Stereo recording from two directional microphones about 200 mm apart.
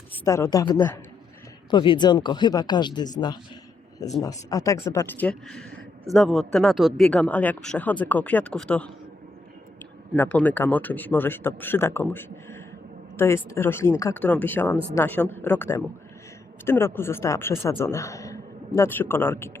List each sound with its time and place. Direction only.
0.3 s a woman's voice: 15° left (ahead or behind)
4.2 s a woman's voice: 15° left (ahead or behind)
10.2 s a woman's voice: 10° left (ahead or behind)